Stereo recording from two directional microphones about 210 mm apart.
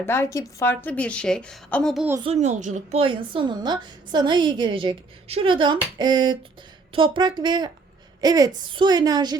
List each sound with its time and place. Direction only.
0.0 s a woman's voice: 10° left (ahead or behind)
2.2 s a woman's voice: 30° right (ahead or behind)